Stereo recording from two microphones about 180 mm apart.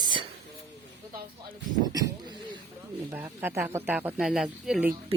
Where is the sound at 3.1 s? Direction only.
10° right (ahead or behind).